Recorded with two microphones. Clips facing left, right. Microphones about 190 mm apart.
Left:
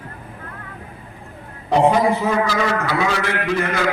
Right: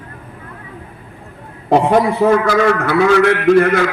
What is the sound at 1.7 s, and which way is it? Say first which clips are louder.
A man's voice: right 3 dB; 55° right (ahead or behind).